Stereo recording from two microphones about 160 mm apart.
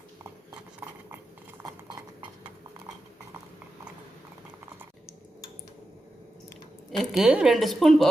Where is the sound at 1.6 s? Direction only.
25° right (ahead or behind).